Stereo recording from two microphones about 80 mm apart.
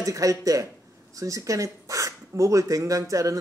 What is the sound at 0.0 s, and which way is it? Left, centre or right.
Speech, right.